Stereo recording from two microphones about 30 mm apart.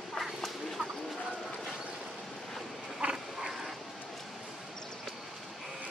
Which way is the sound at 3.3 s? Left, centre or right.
Centre.